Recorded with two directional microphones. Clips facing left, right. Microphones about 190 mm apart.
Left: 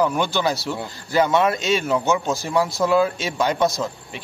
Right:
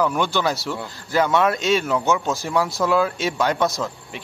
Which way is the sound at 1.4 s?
5° left (ahead or behind).